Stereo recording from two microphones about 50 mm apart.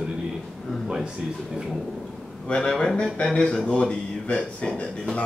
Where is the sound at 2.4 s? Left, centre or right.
Left.